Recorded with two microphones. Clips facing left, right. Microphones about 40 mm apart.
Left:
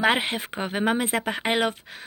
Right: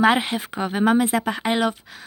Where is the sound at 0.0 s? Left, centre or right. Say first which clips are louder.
Right 4 dB; left.